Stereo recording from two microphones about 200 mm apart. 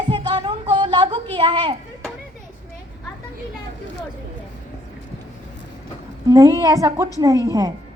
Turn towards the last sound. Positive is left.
turn(degrees=-20)  # may be behind; listen again after turning